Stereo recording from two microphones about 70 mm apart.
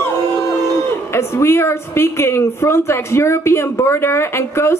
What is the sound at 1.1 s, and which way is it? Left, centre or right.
A woman's voice, left.